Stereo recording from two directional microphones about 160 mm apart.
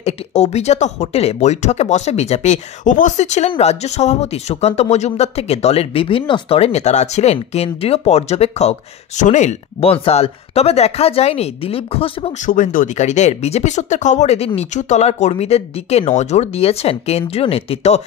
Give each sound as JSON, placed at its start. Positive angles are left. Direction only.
{"t": 0.0, "sound": "speech", "side_deg": 40}
{"t": 12.4, "sound": "speech", "side_deg": 55}